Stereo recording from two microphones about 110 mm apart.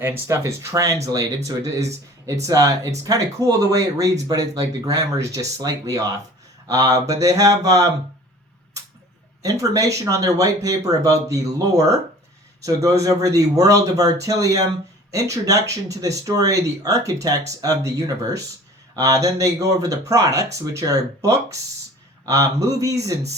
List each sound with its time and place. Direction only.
0.0 s speech: 25° right (ahead or behind)
9.4 s speech: 30° right (ahead or behind)